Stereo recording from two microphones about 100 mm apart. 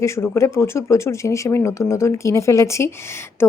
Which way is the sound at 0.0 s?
30° left (ahead or behind).